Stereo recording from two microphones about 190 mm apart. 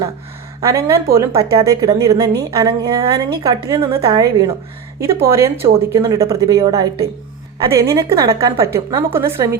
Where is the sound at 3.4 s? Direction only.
15° right (ahead or behind).